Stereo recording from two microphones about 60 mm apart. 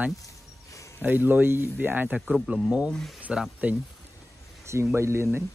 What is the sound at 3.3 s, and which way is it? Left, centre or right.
Speech, centre.